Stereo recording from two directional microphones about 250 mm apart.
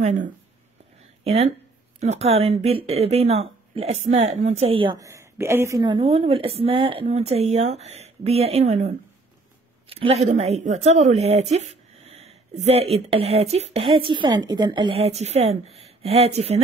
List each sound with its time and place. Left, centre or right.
0.0 s speech: right